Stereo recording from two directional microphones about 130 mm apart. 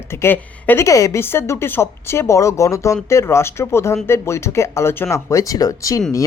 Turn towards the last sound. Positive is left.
turn(degrees=25)  # may be behind; listen again after turning